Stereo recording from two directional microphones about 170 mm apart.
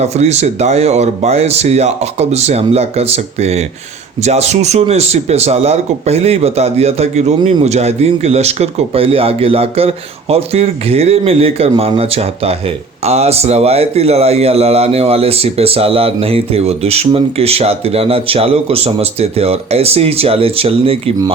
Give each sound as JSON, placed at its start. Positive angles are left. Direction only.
{"t": 0.0, "sound": "speech", "side_deg": -40}